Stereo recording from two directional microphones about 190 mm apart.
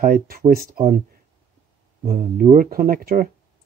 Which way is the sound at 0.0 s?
45° right (ahead or behind).